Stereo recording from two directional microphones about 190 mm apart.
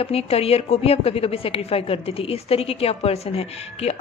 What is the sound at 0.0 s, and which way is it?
A woman's voice, 30° left (ahead or behind).